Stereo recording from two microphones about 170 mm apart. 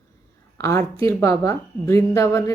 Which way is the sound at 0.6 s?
15° left (ahead or behind).